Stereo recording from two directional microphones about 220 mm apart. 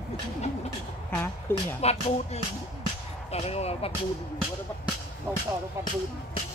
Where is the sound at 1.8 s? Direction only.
30° left (ahead or behind).